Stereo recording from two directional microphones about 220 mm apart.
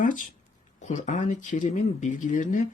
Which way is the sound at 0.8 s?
35° left (ahead or behind).